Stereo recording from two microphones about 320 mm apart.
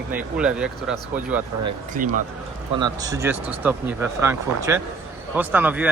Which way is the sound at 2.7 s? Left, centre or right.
Centre.